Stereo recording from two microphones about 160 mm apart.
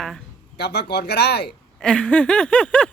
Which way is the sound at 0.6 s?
90° left.